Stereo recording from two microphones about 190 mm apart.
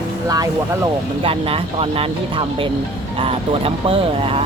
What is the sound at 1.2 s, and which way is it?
Speech, 30° right (ahead or behind).